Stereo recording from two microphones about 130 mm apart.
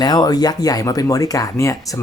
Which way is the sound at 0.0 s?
30° left (ahead or behind).